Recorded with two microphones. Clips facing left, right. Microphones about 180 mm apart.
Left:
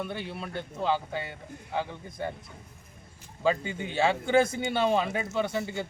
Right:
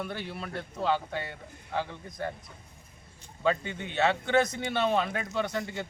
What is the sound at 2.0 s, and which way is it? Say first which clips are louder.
Speech: left 1 dB; 25° left (ahead or behind).